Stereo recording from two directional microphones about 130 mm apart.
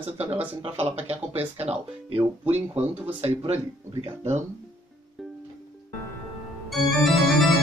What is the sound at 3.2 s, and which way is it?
Speech, 50° right (ahead or behind).